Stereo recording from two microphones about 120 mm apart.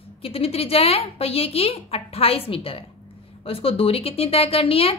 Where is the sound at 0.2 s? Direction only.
55° left (ahead or behind).